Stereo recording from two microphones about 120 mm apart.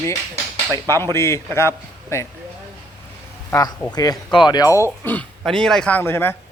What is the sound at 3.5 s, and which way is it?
Speech, 30° left (ahead or behind).